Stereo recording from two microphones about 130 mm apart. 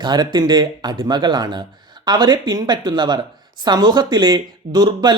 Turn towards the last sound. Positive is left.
turn(degrees=-30)  # may be behind; listen again after turning